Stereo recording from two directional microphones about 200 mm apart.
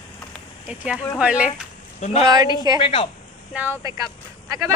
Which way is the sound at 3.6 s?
10° right (ahead or behind).